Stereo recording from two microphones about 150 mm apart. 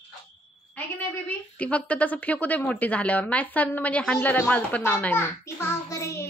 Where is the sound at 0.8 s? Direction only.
10° left (ahead or behind).